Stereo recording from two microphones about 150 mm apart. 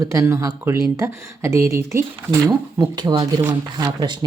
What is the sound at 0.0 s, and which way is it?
Speech, 20° right (ahead or behind).